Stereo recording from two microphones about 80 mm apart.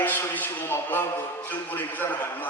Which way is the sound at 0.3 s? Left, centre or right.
Left.